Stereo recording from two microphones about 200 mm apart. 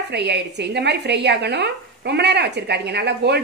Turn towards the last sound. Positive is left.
turn(degrees=-55)  # may be behind; listen again after turning